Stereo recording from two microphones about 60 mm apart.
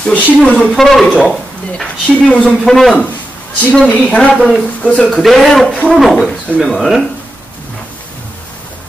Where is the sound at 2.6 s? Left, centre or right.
Centre.